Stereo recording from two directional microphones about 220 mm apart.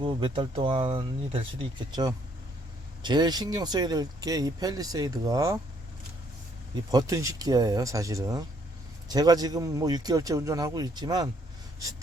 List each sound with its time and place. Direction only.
0.0 s speech: 20° right (ahead or behind)
6.9 s speech: 15° right (ahead or behind)